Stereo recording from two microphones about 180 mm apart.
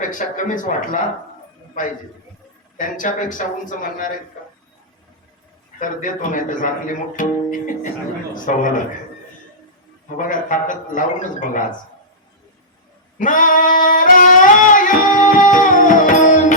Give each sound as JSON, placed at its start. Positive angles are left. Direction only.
{"t": 0.1, "sound": "speech", "side_deg": 45}
{"t": 2.7, "sound": "speech", "side_deg": 50}
{"t": 5.8, "sound": "speech", "side_deg": 45}
{"t": 10.2, "sound": "speech", "side_deg": 50}
{"t": 13.1, "sound": "singing", "side_deg": 50}